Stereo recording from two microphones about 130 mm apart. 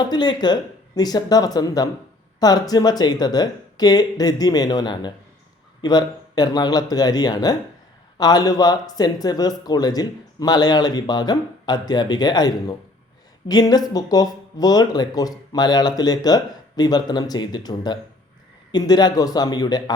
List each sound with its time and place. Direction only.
0.0 s speech: 35° left (ahead or behind)